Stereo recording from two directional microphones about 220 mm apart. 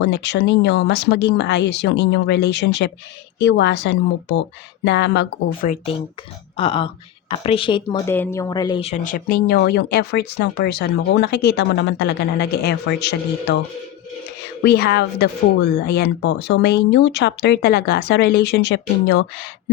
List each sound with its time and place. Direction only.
0.0 s speech: 50° left (ahead or behind)
5.6 s speech: 25° left (ahead or behind); by 13.6 s 50° left (ahead or behind)
14.6 s speech: 45° left (ahead or behind)